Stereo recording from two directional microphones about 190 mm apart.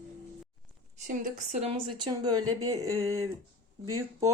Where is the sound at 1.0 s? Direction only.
40° right (ahead or behind).